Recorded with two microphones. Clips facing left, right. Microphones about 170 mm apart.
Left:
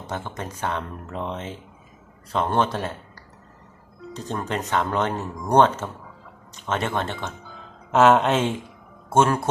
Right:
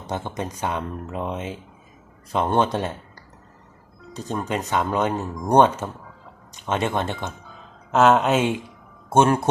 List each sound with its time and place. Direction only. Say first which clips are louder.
0.1 s speech: right 4 dB; 15° right (ahead or behind)
4.1 s speech: right 2 dB; 10° right (ahead or behind)
7.9 s speech: even; centre (ahead or behind)
9.0 s speech: right 2 dB; 20° right (ahead or behind)